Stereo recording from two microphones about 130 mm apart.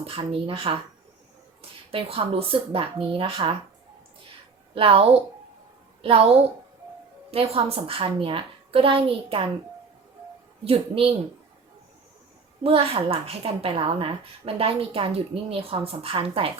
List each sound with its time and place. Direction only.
0.0 s a woman's voice: 45° right (ahead or behind)
1.9 s a woman's voice: 45° right (ahead or behind)
4.7 s a woman's voice: 45° right (ahead or behind)
10.6 s a woman's voice: 45° right (ahead or behind)
12.6 s a woman's voice: 50° right (ahead or behind)